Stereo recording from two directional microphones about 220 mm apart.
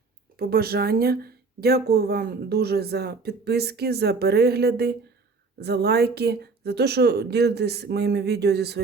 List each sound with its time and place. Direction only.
0.3 s speech: 45° right (ahead or behind)